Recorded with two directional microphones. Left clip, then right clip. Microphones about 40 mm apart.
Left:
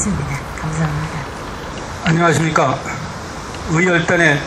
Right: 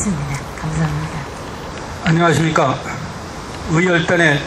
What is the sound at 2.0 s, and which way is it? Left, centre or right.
Speech, centre.